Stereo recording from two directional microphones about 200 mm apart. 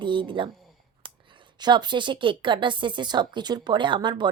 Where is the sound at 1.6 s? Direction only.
20° right (ahead or behind).